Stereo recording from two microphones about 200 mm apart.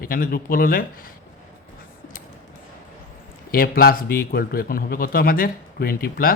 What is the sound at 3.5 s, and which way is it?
Speech, 45° left (ahead or behind).